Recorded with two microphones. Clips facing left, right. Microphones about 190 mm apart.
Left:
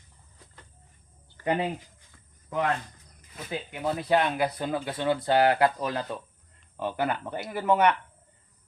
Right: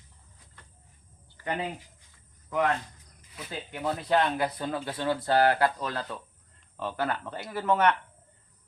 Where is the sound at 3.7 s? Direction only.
10° left (ahead or behind).